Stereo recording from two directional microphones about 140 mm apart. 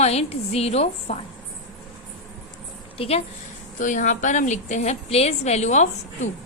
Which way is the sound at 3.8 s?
65° left (ahead or behind).